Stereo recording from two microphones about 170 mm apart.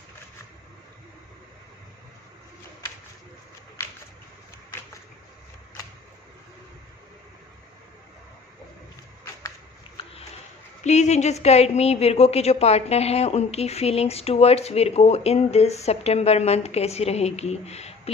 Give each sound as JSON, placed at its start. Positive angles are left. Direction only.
{"t": 10.8, "sound": "a woman's voice", "side_deg": 40}